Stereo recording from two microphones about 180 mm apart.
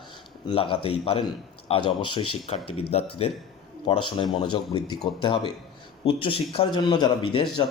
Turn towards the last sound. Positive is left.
turn(degrees=25)  # may be behind; listen again after turning